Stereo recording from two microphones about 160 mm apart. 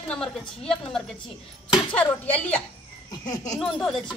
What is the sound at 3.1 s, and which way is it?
Speech, 25° left (ahead or behind).